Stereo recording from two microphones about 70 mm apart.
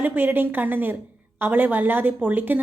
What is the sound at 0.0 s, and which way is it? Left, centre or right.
A woman's voice, right.